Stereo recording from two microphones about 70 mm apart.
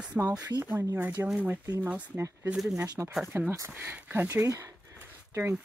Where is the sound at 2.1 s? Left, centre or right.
Right.